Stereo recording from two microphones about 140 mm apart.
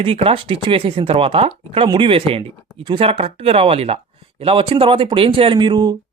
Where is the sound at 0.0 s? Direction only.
40° right (ahead or behind).